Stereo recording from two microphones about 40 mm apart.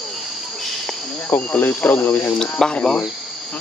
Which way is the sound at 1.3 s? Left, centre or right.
Left.